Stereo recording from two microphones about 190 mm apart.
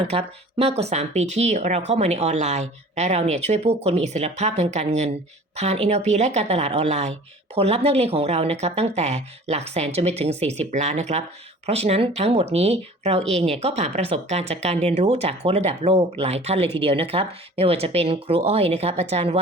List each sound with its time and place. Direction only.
0.1 s speech: 35° right (ahead or behind)